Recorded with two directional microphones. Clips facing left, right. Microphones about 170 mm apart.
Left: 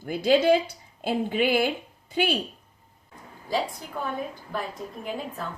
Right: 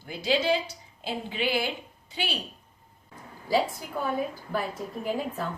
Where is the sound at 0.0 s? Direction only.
50° left (ahead or behind).